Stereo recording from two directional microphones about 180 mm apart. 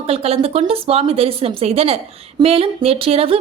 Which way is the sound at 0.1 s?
35° right (ahead or behind).